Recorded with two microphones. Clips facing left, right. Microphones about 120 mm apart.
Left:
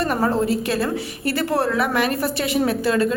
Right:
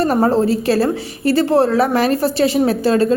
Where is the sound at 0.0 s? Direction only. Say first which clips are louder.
Right 6 dB; 35° right (ahead or behind).